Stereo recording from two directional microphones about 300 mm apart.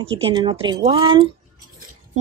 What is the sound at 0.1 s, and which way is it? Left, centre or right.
Speech, centre.